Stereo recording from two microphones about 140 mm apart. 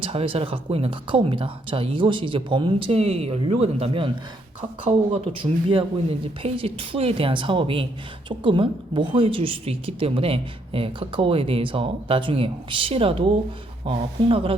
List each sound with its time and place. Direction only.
0.0 s speech: 40° right (ahead or behind)